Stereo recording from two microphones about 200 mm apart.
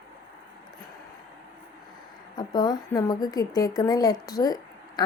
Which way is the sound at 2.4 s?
20° left (ahead or behind).